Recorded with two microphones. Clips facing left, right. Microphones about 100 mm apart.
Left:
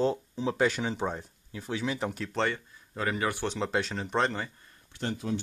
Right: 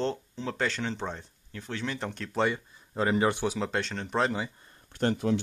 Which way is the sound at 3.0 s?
25° right (ahead or behind).